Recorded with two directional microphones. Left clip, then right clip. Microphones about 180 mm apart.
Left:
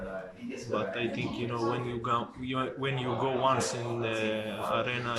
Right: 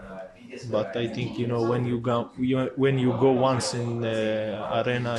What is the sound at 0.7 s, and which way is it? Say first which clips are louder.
A man's voice: right 5 dB; 30° right (ahead or behind).